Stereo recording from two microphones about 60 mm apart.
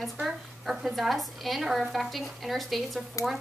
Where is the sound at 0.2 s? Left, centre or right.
Centre.